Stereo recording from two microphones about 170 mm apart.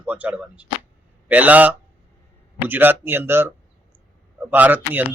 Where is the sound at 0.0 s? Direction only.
10° right (ahead or behind).